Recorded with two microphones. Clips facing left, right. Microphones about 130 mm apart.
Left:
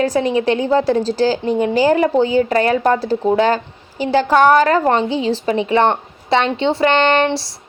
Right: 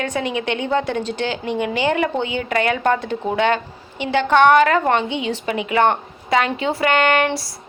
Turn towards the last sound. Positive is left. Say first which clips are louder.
# left 3 dB
turn(degrees=25)  # may be behind; listen again after turning